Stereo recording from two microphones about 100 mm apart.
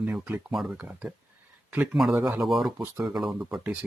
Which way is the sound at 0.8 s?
15° right (ahead or behind).